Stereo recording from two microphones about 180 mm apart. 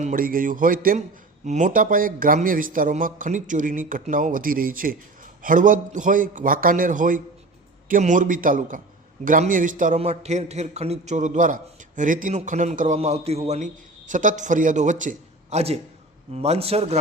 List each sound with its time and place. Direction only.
0.0 s a man's voice: 50° right (ahead or behind)